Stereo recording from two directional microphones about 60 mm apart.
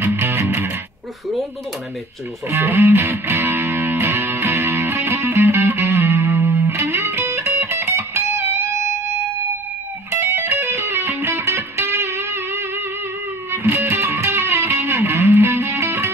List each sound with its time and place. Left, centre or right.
0.0 s music: right
2.7 s music: right
10.2 s music: right